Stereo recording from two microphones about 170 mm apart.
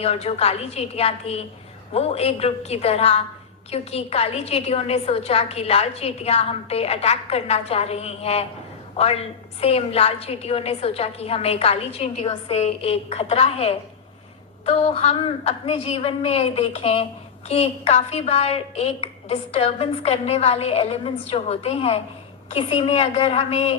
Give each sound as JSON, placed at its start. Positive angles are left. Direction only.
{"t": 0.0, "sound": "a woman's voice", "side_deg": 40}